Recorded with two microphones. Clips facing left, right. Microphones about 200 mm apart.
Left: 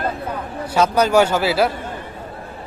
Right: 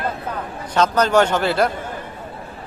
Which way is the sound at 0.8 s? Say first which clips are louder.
Left 1 dB; 10° left (ahead or behind).